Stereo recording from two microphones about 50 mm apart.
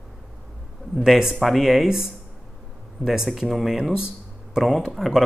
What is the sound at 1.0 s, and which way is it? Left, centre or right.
Speech, centre.